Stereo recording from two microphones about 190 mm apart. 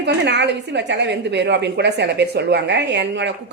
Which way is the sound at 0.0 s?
65° right (ahead or behind).